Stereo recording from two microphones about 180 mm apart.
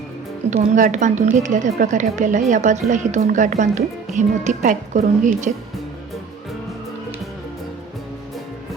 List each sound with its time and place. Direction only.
0.5 s a woman's voice: 40° right (ahead or behind)